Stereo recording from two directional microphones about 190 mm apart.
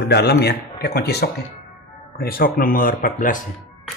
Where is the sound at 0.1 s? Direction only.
60° left (ahead or behind).